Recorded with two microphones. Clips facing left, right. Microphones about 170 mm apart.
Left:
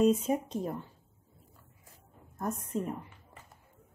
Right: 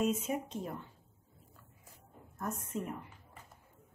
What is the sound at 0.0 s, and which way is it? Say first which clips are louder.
Speech: left 7 dB; 35° left (ahead or behind).